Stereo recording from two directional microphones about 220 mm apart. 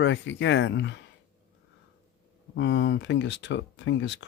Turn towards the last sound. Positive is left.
turn(degrees=55)  # may be behind; listen again after turning